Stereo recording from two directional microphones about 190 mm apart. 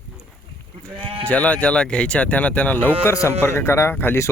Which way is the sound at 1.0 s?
30° right (ahead or behind).